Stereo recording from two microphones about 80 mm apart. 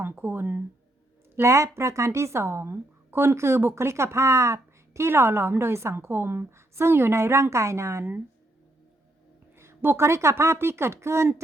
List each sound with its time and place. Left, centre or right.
0.0 s speech: right
1.4 s speech: right
9.6 s speech: right